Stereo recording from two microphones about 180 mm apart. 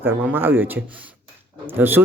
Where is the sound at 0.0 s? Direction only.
10° right (ahead or behind).